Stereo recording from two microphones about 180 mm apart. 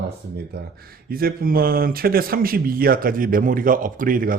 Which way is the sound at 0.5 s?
60° right (ahead or behind).